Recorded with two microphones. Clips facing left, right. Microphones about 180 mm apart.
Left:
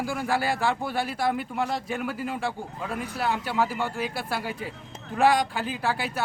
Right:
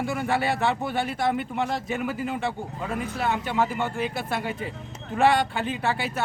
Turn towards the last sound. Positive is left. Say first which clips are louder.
# right 1 dB
turn(degrees=0)  # may be behind; listen again after turning